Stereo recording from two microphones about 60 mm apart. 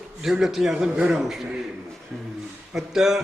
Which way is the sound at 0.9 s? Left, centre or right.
Centre.